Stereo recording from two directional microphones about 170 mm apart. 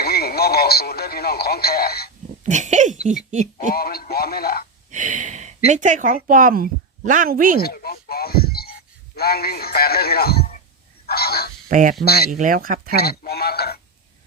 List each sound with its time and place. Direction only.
0.0 s speech: 65° left (ahead or behind)
2.4 s speech: 45° right (ahead or behind)
3.7 s speech: 65° left (ahead or behind)
4.9 s speech: 45° right (ahead or behind)
7.6 s speech: 65° left (ahead or behind)
11.0 s a sound: 65° left (ahead or behind)
11.7 s speech: 50° right (ahead or behind)
13.0 s speech: 65° left (ahead or behind)